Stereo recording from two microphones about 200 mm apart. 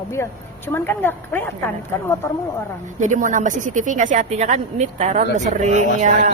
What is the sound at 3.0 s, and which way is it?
Speech, 40° right (ahead or behind).